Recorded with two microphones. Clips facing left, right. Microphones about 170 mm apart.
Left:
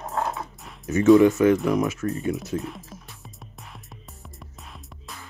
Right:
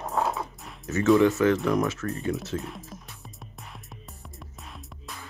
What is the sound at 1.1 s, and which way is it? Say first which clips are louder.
Speech: left 3 dB; 15° left (ahead or behind).